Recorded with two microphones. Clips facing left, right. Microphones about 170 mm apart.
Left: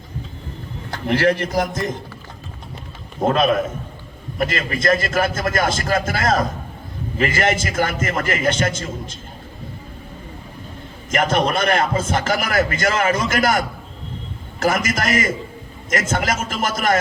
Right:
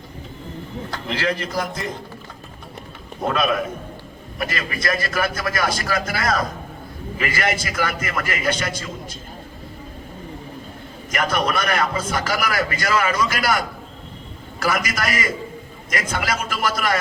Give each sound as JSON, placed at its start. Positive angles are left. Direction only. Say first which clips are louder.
{"t": 0.9, "sound": "a man's voice", "louder": "left 7 dB", "side_deg": 55}
{"t": 3.2, "sound": "a man's voice", "louder": "left 4 dB", "side_deg": 40}
{"t": 11.1, "sound": "a man's voice", "louder": "left 3 dB", "side_deg": 50}